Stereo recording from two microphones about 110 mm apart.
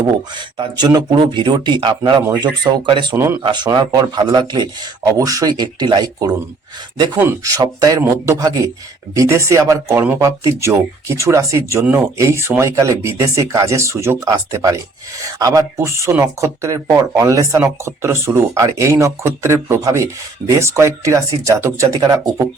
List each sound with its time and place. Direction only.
0.6 s speech: 40° right (ahead or behind)
3.2 s speech: 25° right (ahead or behind)
3.4 s speech: 40° right (ahead or behind)
5.1 s speech: 30° right (ahead or behind)
7.4 s speech: 35° right (ahead or behind)